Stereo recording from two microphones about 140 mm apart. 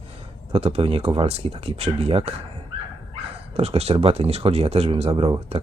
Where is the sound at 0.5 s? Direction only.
45° right (ahead or behind).